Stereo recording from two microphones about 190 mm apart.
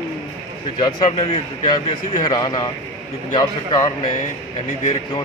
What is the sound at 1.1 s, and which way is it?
Speech, 35° left (ahead or behind).